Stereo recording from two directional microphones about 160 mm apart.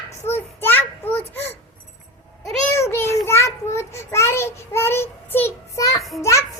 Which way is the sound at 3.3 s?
15° left (ahead or behind).